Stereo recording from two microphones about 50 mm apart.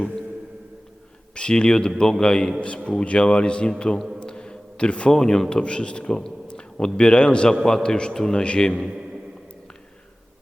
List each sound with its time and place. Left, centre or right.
1.4 s a man's voice: centre
4.2 s a sound: centre
5.1 s a man's voice: centre